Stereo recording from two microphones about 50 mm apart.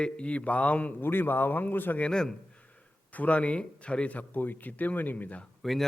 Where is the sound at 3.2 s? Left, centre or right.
Left.